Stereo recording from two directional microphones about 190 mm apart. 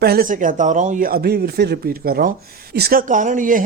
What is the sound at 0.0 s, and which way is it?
A man's voice, 55° right (ahead or behind).